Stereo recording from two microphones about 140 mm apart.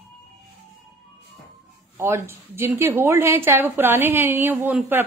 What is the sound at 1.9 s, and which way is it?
A woman's voice, 20° right (ahead or behind).